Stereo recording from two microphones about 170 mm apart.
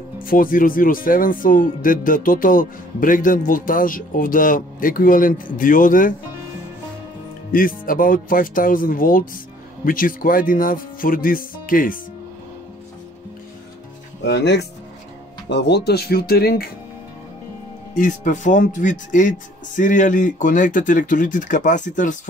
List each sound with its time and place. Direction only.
0.2 s speech: 55° left (ahead or behind)
7.5 s speech: 55° left (ahead or behind)
14.2 s speech: 80° left; by 16.6 s 65° left (ahead or behind)
17.9 s speech: 50° left (ahead or behind)